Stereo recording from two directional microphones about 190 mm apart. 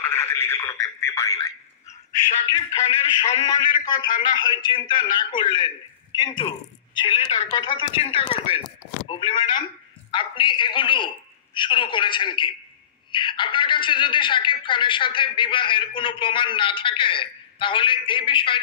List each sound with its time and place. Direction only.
0.0 s speech: 10° left (ahead or behind)
2.5 s speech: 20° left (ahead or behind)